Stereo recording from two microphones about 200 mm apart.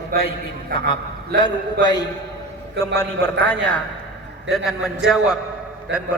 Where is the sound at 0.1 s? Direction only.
45° right (ahead or behind).